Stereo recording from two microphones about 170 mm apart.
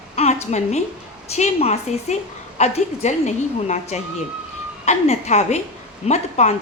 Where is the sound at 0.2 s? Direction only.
40° left (ahead or behind).